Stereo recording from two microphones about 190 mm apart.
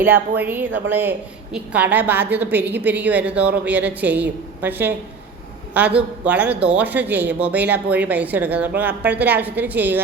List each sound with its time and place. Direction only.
0.0 s speech: 10° right (ahead or behind)